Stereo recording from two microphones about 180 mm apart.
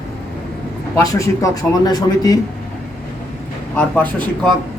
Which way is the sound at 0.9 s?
20° left (ahead or behind).